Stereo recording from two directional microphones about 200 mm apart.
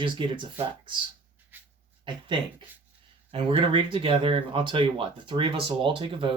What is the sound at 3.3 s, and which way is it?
Speech, 25° right (ahead or behind).